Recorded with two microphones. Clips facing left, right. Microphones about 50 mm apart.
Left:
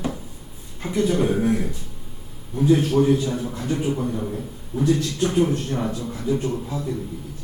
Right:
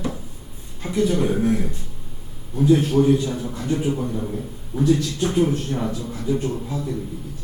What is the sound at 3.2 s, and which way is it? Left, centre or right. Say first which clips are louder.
A man's voice: even; left.